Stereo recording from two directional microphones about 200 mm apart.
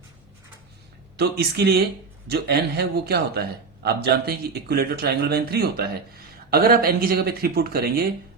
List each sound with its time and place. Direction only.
1.1 s a man's voice: 55° right (ahead or behind)